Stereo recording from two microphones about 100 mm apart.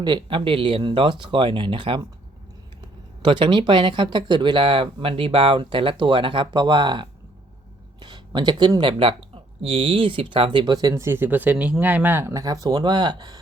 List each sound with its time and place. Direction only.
0.0 s speech: 50° right (ahead or behind)
3.2 s speech: 55° right (ahead or behind)
11.0 s speech: 20° right (ahead or behind)
11.5 s speech: 5° right (ahead or behind)
11.8 s speech: 15° right (ahead or behind)
12.3 s speech: 35° right (ahead or behind)